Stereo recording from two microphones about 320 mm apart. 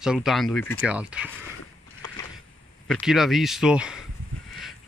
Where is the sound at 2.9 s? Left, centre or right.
Centre.